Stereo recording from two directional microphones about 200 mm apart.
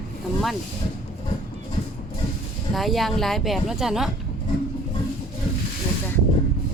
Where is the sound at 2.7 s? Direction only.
Centre (ahead or behind).